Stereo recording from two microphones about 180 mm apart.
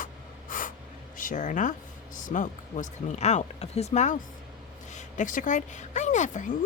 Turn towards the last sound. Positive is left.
turn(degrees=45)  # may be behind; listen again after turning